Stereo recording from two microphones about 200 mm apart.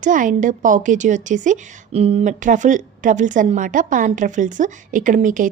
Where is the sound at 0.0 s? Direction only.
40° right (ahead or behind).